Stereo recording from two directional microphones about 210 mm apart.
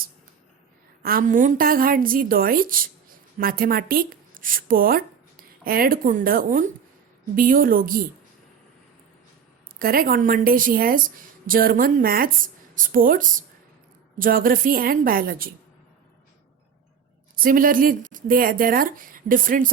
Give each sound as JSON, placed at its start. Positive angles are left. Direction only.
{"t": 1.0, "sound": "a woman's voice", "side_deg": -40}
{"t": 9.7, "sound": "a woman's voice", "side_deg": -45}
{"t": 17.3, "sound": "a woman's voice", "side_deg": -40}